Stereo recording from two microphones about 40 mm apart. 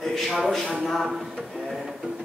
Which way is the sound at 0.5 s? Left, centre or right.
Centre.